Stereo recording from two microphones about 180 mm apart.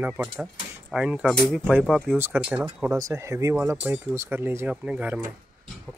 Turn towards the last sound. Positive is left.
turn(degrees=-10)  # may be behind; listen again after turning